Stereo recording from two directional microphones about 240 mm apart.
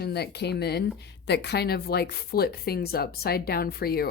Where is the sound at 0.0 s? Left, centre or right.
Left.